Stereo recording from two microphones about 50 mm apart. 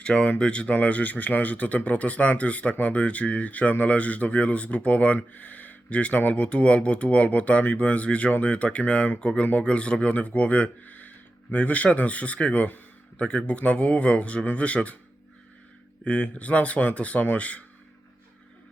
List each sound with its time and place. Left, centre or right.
0.0 s speech: left
16.0 s speech: left